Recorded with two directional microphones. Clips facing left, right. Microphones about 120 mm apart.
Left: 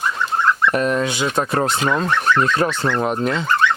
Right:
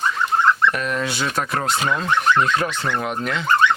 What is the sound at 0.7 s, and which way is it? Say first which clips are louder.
Speech: left 6 dB; 35° left (ahead or behind).